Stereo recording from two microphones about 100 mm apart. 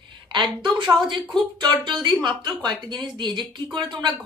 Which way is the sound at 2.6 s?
45° right (ahead or behind).